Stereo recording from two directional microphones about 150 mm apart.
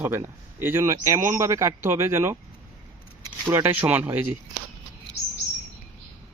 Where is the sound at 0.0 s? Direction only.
15° right (ahead or behind).